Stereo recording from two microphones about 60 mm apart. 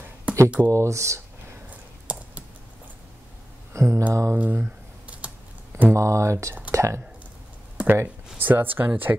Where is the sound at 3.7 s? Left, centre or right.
Right.